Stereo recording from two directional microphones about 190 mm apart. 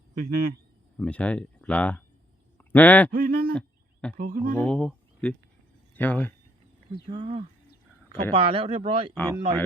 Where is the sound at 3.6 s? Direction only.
5° left (ahead or behind).